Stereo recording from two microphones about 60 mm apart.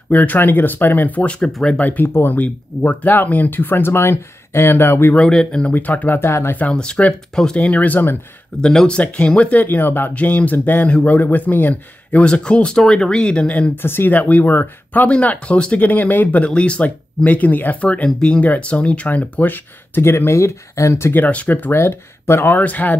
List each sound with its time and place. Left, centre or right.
0.1 s speech: left
1.8 s speech: left
5.1 s speech: centre
5.7 s speech: left
6.5 s speech: left
8.5 s speech: centre; by 10.1 s left
10.1 s speech: left
13.7 s speech: left
14.1 s speech: left
15.0 s speech: centre; by 21.1 s left
21.1 s speech: left
22.6 s speech: left